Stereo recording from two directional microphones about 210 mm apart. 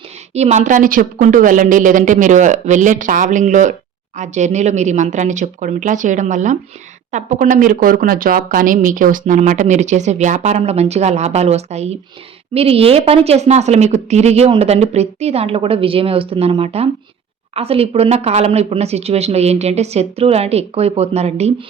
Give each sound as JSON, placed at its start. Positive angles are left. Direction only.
{"t": 0.3, "sound": "a woman's voice", "side_deg": -30}